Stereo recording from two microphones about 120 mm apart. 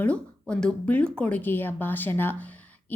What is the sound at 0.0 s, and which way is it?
A woman's voice, 10° left (ahead or behind).